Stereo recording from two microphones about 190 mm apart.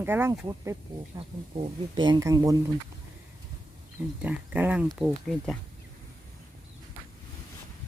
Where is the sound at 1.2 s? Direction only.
25° right (ahead or behind).